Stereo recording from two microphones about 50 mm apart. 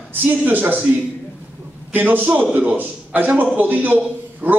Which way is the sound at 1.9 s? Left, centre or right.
Right.